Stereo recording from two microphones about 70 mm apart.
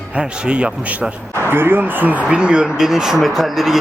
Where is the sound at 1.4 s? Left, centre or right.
Right.